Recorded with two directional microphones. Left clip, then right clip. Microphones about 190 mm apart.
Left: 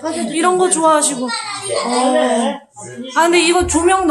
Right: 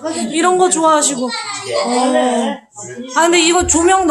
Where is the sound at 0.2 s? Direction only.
15° right (ahead or behind).